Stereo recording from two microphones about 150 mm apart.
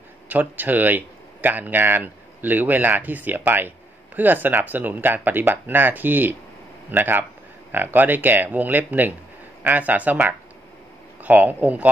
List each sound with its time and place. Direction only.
0.3 s speech: 10° right (ahead or behind)